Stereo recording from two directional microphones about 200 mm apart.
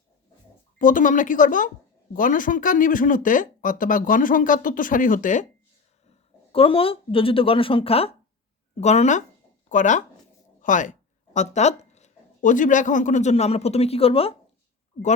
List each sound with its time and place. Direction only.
0.8 s speech: 40° left (ahead or behind)
6.5 s speech: 25° left (ahead or behind)